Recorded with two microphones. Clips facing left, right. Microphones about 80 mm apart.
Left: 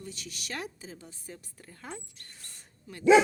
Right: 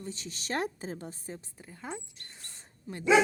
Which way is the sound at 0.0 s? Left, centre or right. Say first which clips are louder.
Right 2 dB; right.